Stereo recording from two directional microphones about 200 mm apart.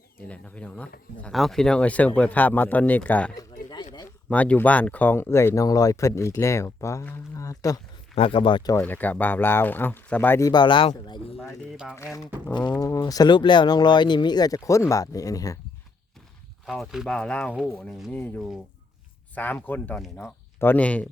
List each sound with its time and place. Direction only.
0.3 s speech: 5° left (ahead or behind)
3.3 s a sound: 20° left (ahead or behind)
4.3 s speech: 5° left (ahead or behind)
8.1 s speech: 25° left (ahead or behind)
8.8 s speech: 10° left (ahead or behind); by 11.3 s 25° left (ahead or behind)
12.7 s speech: 15° left (ahead or behind)
16.6 s speech: centre (ahead or behind)